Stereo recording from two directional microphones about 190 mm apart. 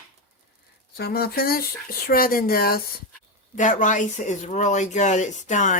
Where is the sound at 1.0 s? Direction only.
55° left (ahead or behind).